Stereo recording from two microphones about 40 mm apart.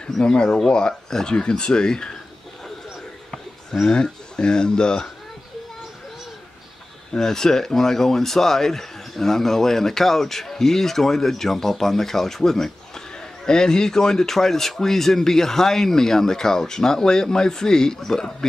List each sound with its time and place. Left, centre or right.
0.0 s speech: left
3.9 s speech: left
7.2 s speech: centre